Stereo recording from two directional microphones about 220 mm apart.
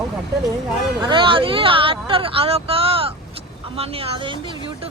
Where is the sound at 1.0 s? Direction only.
20° right (ahead or behind).